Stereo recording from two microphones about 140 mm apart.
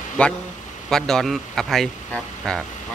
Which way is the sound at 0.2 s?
10° left (ahead or behind).